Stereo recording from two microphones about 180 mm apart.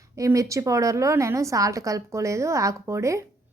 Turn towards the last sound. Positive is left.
turn(degrees=-15)  # may be behind; listen again after turning